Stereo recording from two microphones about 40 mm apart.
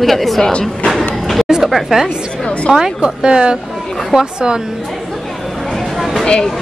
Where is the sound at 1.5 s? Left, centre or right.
Centre.